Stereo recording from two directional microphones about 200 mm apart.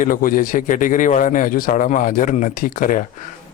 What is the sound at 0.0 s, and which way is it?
Speech, 45° left (ahead or behind).